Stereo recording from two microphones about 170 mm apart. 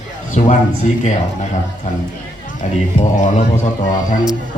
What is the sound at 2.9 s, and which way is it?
Speech, 45° left (ahead or behind).